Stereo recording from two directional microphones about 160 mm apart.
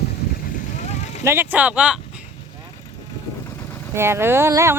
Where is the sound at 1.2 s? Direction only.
15° right (ahead or behind).